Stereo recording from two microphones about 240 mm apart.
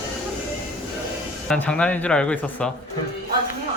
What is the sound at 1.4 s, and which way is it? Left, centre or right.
Speech, centre.